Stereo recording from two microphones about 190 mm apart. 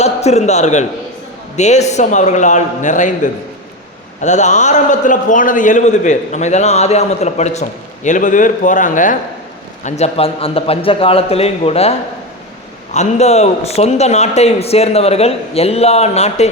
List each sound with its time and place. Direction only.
0.0 s a man's voice: 35° left (ahead or behind)
4.2 s a man's voice: 40° left (ahead or behind)